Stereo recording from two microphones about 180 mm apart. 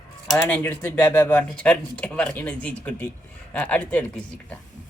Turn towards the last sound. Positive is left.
turn(degrees=10)  # may be behind; listen again after turning